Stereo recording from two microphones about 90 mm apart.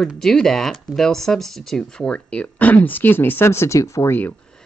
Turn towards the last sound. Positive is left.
turn(degrees=35)  # may be behind; listen again after turning